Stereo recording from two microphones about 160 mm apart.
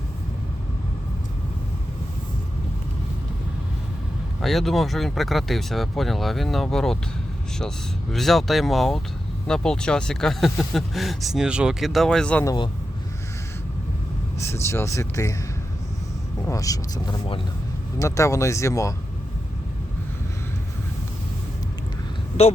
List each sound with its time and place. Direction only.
4.4 s speech: centre (ahead or behind)
8.1 s speech: centre (ahead or behind)
12.5 s speech: 30° left (ahead or behind)
14.3 s speech: 15° left (ahead or behind)
16.5 s speech: 20° left (ahead or behind)